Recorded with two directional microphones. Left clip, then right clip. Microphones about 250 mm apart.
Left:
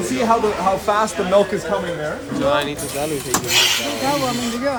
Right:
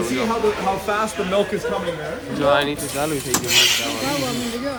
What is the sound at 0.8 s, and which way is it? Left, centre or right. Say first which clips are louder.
Speech: left 4 dB; left.